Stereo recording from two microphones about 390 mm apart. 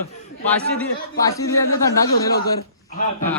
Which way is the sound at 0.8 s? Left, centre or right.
Centre.